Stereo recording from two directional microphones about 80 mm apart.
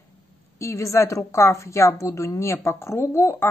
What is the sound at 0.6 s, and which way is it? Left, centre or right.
A woman's voice, left.